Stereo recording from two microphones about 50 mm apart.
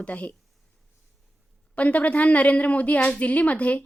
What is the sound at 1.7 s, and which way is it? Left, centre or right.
A woman's voice, left.